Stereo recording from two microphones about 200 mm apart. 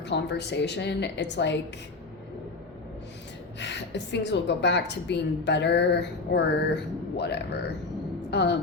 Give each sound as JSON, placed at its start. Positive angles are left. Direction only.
{"t": 0.0, "sound": "a woman's voice", "side_deg": 60}
{"t": 3.6, "sound": "a woman's voice", "side_deg": 60}